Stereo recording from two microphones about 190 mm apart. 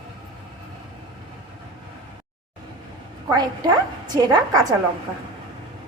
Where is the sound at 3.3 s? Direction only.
20° right (ahead or behind).